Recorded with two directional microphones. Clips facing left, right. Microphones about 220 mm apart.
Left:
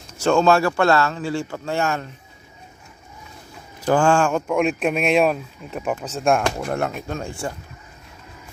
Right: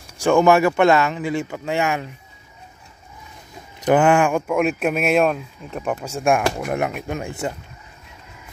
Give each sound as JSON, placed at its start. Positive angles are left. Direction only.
{"t": 0.0, "sound": "speech", "side_deg": -15}
{"t": 3.8, "sound": "speech", "side_deg": -20}
{"t": 6.0, "sound": "speech", "side_deg": -10}